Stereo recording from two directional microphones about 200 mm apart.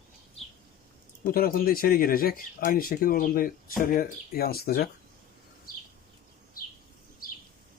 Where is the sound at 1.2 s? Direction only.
45° left (ahead or behind).